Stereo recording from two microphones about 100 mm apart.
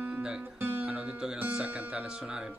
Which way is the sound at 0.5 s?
20° right (ahead or behind).